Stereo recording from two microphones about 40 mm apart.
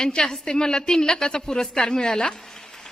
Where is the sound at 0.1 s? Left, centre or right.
Centre.